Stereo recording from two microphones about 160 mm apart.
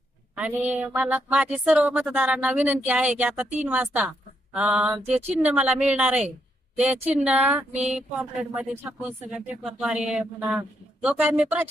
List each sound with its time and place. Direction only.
0.3 s speech: 10° right (ahead or behind)
5.0 s speech: 45° right (ahead or behind)
5.4 s speech: 10° right (ahead or behind)